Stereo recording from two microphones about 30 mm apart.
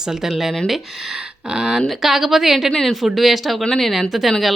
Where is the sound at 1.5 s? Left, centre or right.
Right.